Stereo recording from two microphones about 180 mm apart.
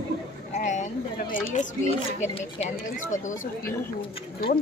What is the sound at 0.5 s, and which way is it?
Speech, 45° left (ahead or behind).